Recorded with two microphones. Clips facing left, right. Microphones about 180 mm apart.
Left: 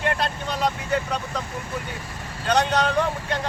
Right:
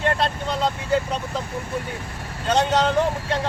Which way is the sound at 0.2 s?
25° right (ahead or behind).